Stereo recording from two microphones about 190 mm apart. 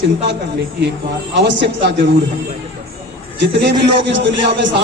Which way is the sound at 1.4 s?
65° right (ahead or behind).